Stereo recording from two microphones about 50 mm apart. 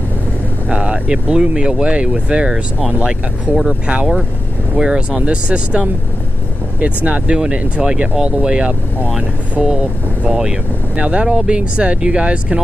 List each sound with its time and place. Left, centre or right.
0.7 s speech: right